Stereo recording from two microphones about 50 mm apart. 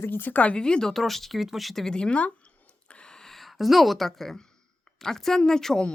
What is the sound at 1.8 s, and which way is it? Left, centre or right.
Speech, centre.